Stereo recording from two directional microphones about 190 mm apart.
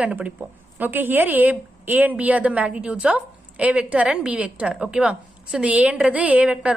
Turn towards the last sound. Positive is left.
turn(degrees=-5)  # may be behind; listen again after turning